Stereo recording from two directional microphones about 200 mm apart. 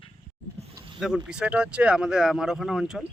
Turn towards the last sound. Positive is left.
turn(degrees=0)  # may be behind; listen again after turning